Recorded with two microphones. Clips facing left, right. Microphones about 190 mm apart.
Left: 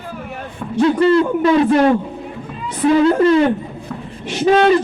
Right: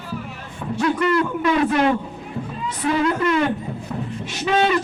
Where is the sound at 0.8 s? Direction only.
30° left (ahead or behind).